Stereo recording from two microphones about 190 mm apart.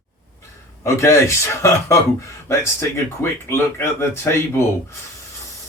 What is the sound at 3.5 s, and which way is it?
Speech, 15° left (ahead or behind).